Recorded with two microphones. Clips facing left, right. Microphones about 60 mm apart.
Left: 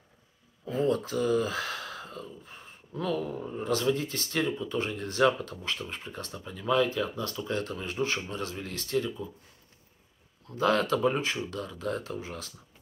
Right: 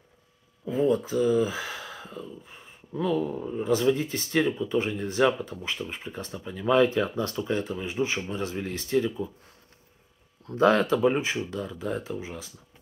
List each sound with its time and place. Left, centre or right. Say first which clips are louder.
0.7 s speech: right 3 dB; centre
6.7 s speech: right 5 dB; right; by 9.3 s centre
10.4 s speech: right 5 dB; right
10.9 s speech: right 3 dB; centre